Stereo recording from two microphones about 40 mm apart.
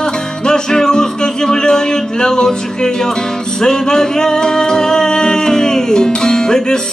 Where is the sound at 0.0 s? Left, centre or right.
Centre.